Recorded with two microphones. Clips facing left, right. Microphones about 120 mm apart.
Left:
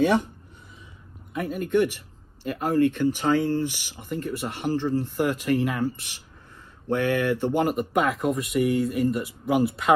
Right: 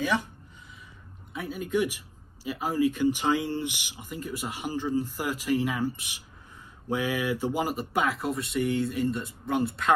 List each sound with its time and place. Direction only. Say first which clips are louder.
1.3 s speech: left 5 dB; centre (ahead or behind)
5.9 s speech: even; 10° right (ahead or behind)